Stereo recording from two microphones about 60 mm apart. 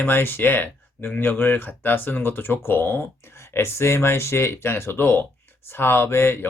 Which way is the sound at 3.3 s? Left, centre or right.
Left.